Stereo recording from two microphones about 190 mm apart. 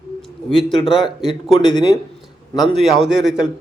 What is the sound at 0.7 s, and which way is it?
Speech, 25° left (ahead or behind).